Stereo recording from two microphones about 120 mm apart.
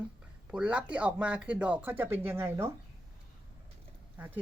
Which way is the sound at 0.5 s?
10° right (ahead or behind).